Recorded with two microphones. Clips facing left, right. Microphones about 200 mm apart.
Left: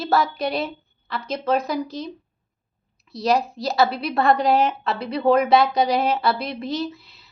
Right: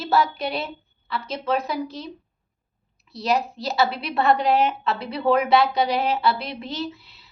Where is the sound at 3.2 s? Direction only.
35° left (ahead or behind).